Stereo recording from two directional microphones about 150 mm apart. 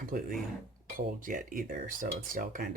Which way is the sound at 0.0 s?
65° right (ahead or behind).